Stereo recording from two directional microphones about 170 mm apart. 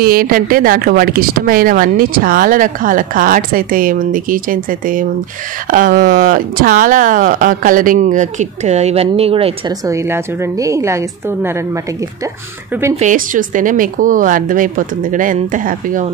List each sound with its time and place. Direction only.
0.0 s a woman's voice: 60° right (ahead or behind); by 9.8 s 35° right (ahead or behind)
9.8 s a woman's voice: 15° right (ahead or behind)
12.9 s speech: 45° right (ahead or behind)